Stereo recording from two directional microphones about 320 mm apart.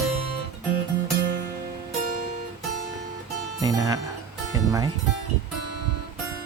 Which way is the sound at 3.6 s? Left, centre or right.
Centre.